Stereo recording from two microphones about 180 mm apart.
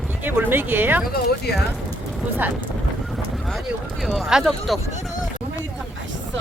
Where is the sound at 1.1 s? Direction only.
55° left (ahead or behind).